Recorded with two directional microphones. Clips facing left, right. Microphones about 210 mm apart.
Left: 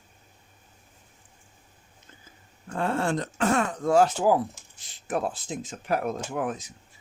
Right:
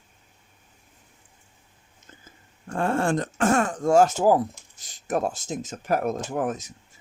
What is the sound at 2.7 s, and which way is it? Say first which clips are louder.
Speech: right 3 dB; 50° right (ahead or behind).